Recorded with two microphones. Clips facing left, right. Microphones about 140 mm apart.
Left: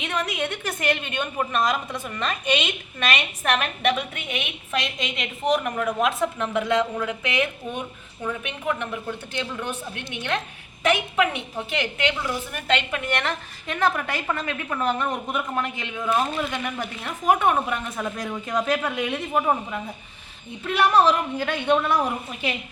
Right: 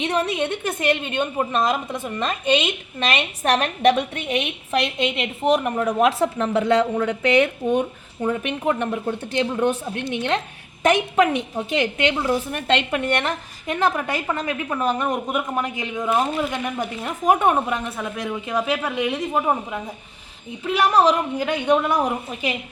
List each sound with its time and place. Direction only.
0.0 s a woman's voice: 30° right (ahead or behind)
17.8 s a woman's voice: 5° right (ahead or behind)